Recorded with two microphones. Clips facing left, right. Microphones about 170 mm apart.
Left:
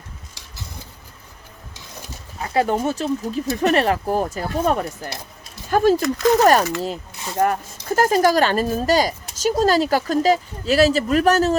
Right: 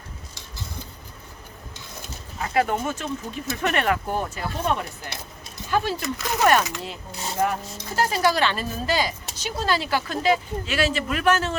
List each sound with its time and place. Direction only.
2.4 s speech: 30° left (ahead or behind)
7.4 s speech: 50° left (ahead or behind)